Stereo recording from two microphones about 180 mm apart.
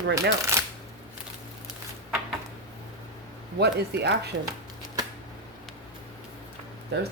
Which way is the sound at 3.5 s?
65° right (ahead or behind).